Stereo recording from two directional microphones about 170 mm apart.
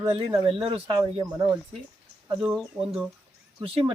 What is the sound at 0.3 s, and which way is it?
Speech, 20° right (ahead or behind).